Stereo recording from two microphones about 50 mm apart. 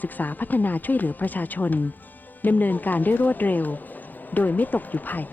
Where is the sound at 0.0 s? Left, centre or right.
Left.